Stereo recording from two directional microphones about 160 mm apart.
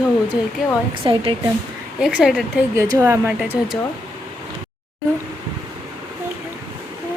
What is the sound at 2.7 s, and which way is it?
Speech, 20° right (ahead or behind).